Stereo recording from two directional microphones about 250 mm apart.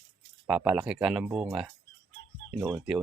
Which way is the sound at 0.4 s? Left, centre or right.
Centre.